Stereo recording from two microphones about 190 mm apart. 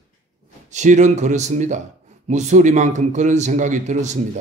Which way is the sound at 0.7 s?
40° right (ahead or behind).